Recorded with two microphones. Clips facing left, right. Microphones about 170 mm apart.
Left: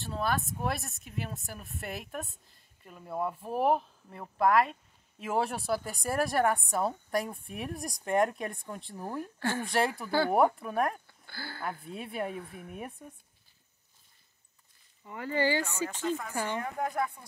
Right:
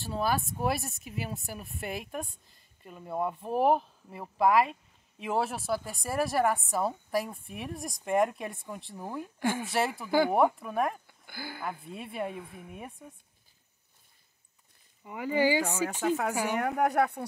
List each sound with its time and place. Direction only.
0.0 s a woman's voice: 5° right (ahead or behind)
11.1 s speech: 15° right (ahead or behind)
11.8 s a woman's voice: centre (ahead or behind)
15.0 s speech: 15° right (ahead or behind)
16.1 s speech: 75° right (ahead or behind)